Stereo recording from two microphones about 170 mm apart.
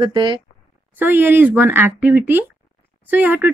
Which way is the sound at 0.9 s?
10° right (ahead or behind).